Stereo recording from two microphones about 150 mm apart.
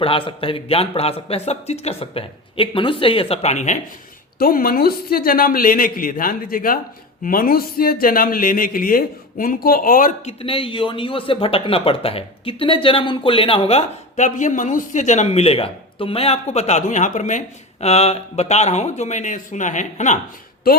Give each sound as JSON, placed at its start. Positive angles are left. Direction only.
{"t": 0.0, "sound": "a man's voice", "side_deg": 35}
{"t": 4.4, "sound": "speech", "side_deg": 75}
{"t": 10.2, "sound": "speech", "side_deg": 40}
{"t": 20.7, "sound": "a woman's voice", "side_deg": 80}